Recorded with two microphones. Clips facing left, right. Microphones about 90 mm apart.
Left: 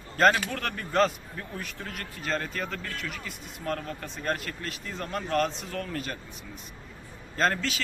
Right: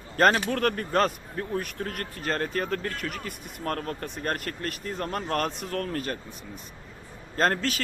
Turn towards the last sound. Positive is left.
turn(degrees=-45)  # may be behind; listen again after turning